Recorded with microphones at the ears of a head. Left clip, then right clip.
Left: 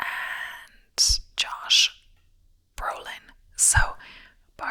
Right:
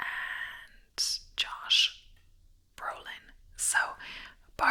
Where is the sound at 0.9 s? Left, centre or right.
Left.